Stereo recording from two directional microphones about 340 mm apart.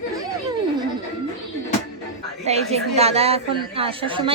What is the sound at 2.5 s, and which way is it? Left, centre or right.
A woman's voice, centre.